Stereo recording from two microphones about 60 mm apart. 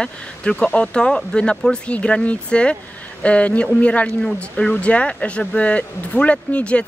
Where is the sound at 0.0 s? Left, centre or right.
Centre.